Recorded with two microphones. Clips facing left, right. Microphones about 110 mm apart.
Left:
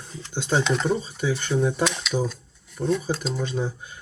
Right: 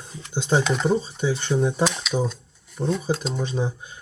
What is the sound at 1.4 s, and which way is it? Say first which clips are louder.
Speech: right 1 dB; centre (ahead or behind).